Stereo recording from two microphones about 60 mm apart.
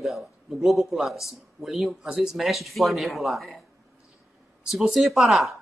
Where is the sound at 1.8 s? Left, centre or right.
Centre.